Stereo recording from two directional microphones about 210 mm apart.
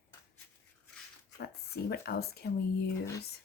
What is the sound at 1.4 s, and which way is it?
Speech, 50° left (ahead or behind).